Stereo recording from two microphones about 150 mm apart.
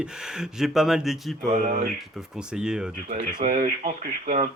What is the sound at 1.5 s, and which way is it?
Speech, 65° right (ahead or behind).